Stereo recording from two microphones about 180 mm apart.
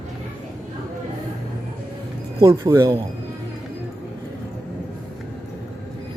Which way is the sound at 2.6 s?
15° right (ahead or behind).